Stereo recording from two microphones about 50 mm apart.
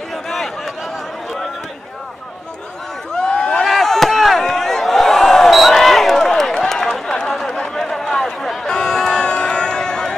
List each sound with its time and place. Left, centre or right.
0.1 s a sound: centre
3.1 s crowd: centre
3.6 s chop: centre
7.7 s music: centre